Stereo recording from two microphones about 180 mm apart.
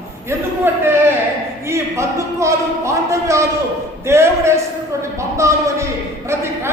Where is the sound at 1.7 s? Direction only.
15° right (ahead or behind).